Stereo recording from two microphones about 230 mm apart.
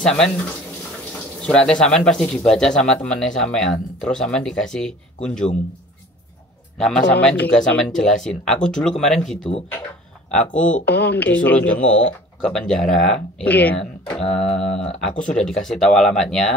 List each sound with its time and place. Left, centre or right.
0.0 s speech: centre
1.4 s speech: centre
6.8 s speech: centre
10.9 s speech: centre